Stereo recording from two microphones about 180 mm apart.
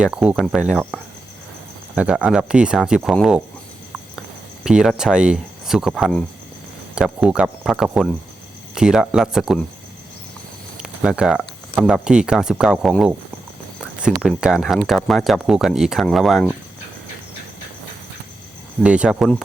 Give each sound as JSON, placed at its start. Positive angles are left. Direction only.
{"t": 0.0, "sound": "speech", "side_deg": -5}
{"t": 2.0, "sound": "speech", "side_deg": -5}
{"t": 4.6, "sound": "speech", "side_deg": -5}
{"t": 10.8, "sound": "speech", "side_deg": -5}
{"t": 14.2, "sound": "speech", "side_deg": -5}
{"t": 18.8, "sound": "speech", "side_deg": -5}